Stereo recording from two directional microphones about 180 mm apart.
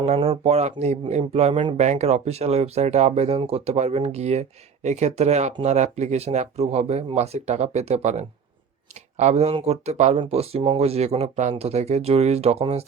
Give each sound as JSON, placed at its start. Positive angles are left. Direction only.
{"t": 0.0, "sound": "speech", "side_deg": -35}